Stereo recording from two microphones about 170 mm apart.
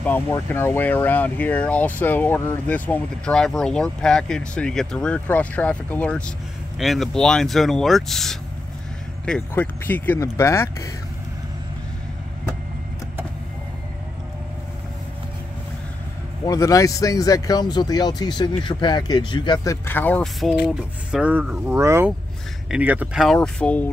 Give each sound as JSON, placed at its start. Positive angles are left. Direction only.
{"t": 0.0, "sound": "speech", "side_deg": 10}
{"t": 16.4, "sound": "speech", "side_deg": 20}